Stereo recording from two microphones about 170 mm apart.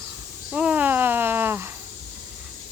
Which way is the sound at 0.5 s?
10° right (ahead or behind).